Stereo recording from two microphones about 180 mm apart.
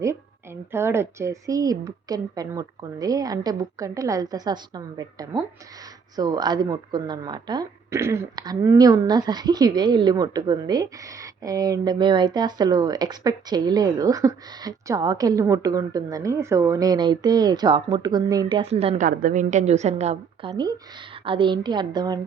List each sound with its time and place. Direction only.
0.0 s speech: 15° right (ahead or behind); by 19.0 s 35° right (ahead or behind)
19.0 s a woman's voice: 50° right (ahead or behind)
20.5 s speech: 25° right (ahead or behind)